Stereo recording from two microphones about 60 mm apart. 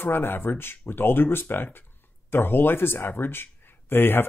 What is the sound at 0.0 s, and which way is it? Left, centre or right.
Speech, left.